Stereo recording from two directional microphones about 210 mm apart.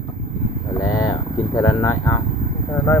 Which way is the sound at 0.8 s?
15° left (ahead or behind).